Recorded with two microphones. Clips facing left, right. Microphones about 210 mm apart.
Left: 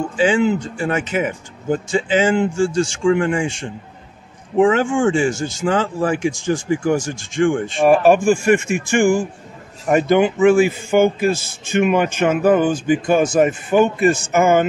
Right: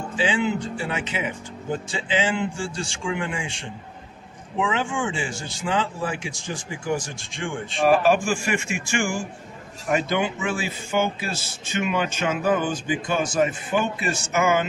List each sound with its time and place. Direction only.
0.2 s speech: 45° left (ahead or behind)